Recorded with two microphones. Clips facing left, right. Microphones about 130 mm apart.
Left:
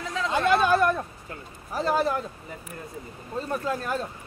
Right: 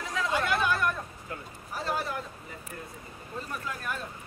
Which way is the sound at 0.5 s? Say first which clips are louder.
Left 11 dB; 30° left (ahead or behind).